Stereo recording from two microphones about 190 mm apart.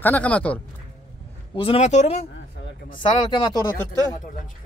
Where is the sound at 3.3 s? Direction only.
20° left (ahead or behind).